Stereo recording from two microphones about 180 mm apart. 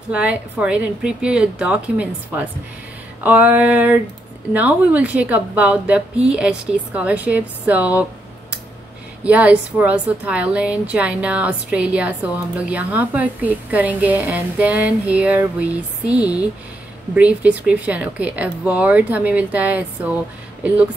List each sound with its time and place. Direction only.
0.1 s a woman's voice: 5° right (ahead or behind)